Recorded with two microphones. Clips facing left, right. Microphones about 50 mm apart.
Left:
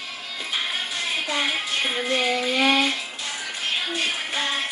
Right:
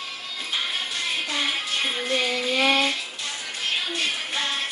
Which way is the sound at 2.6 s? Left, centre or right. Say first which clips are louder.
Left 1 dB; centre.